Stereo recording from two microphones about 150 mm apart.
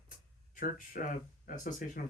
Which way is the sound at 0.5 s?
65° left (ahead or behind).